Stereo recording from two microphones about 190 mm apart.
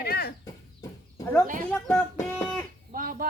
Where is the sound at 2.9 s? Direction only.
45° right (ahead or behind).